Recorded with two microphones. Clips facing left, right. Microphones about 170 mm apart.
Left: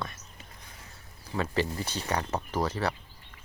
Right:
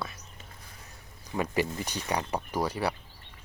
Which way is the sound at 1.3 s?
15° right (ahead or behind).